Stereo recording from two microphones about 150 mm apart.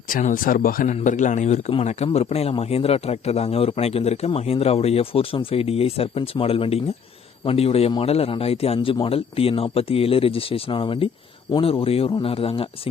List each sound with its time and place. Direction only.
0.2 s speech: 60° left (ahead or behind)
0.9 s a man's voice: 55° left (ahead or behind); by 12.9 s 40° left (ahead or behind)